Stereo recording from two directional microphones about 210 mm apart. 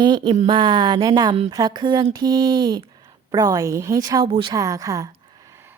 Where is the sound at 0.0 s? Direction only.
20° right (ahead or behind).